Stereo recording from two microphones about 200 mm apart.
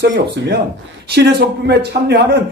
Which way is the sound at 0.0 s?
55° right (ahead or behind).